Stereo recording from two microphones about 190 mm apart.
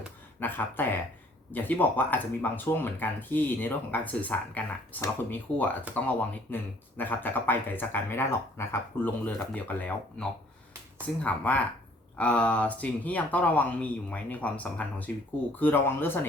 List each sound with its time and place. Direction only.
0.3 s speech: 10° left (ahead or behind)